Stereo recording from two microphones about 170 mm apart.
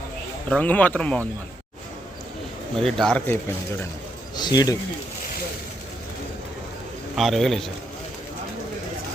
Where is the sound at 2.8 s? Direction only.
5° left (ahead or behind).